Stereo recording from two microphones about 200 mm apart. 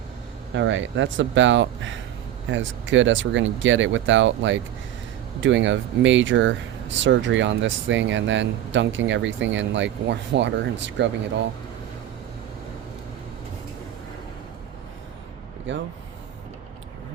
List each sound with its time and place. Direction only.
0.5 s speech: 70° right (ahead or behind)